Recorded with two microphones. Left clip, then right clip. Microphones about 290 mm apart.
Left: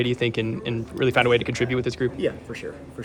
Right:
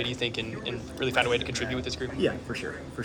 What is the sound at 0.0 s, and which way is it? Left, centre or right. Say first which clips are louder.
Speech: left 6 dB; left.